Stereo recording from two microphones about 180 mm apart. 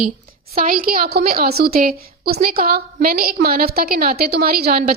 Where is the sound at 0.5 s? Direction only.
55° right (ahead or behind).